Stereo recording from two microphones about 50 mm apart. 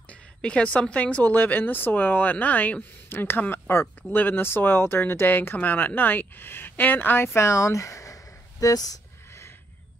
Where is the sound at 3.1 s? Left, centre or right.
Left.